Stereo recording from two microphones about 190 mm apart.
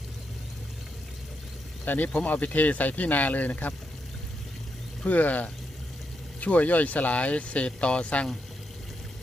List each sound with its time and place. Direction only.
1.8 s speech: 10° left (ahead or behind)
5.0 s speech: 10° left (ahead or behind)